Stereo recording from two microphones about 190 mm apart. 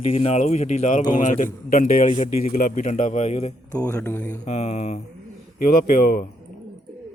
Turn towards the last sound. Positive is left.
turn(degrees=50)  # may be behind; listen again after turning